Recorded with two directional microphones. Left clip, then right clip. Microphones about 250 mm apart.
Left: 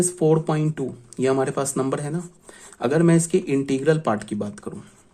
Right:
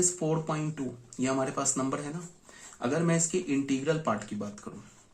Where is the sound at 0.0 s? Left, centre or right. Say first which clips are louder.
Left 10 dB; left.